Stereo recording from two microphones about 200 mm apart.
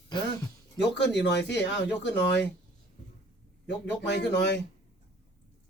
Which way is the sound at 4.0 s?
60° left (ahead or behind).